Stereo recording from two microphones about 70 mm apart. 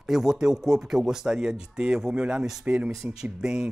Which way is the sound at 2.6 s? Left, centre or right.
Centre.